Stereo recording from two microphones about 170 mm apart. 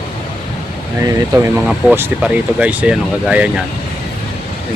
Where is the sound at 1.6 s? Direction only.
10° right (ahead or behind).